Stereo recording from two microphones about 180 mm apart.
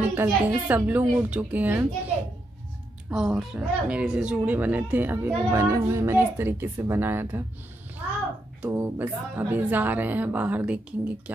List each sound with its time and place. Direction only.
0.1 s speech: 10° right (ahead or behind)
3.1 s speech: 5° right (ahead or behind)
8.5 s speech: 10° right (ahead or behind)